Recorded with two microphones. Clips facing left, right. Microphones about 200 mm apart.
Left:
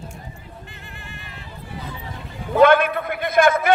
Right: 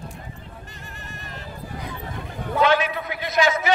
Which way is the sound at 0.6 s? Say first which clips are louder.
Even; 40° right (ahead or behind).